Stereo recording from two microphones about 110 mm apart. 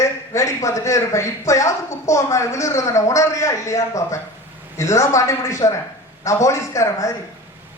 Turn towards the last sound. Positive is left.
turn(degrees=30)  # may be behind; listen again after turning